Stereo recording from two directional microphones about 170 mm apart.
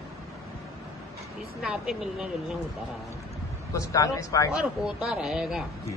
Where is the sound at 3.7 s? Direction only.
20° left (ahead or behind).